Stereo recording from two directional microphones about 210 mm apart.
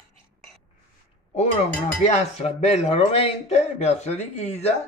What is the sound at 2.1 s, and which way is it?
A man's voice, 30° left (ahead or behind).